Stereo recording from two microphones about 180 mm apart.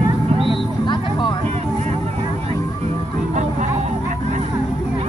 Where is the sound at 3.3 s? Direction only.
45° right (ahead or behind).